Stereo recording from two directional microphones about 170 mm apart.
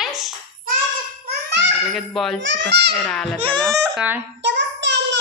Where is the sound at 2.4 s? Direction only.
85° right.